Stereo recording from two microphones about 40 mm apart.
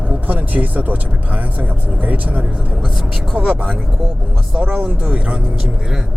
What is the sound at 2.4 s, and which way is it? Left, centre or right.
Speech, right.